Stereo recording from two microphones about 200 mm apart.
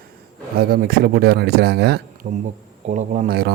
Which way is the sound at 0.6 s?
50° right (ahead or behind).